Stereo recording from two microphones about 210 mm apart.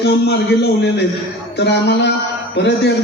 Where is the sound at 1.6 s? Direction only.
55° left (ahead or behind).